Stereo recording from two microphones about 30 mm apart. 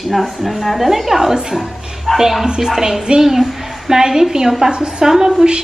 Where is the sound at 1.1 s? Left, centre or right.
Centre.